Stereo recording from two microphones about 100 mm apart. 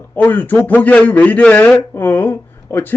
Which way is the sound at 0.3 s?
15° left (ahead or behind).